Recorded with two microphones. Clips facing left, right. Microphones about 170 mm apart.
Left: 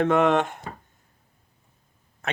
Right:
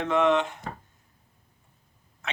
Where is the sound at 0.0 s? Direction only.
50° left (ahead or behind).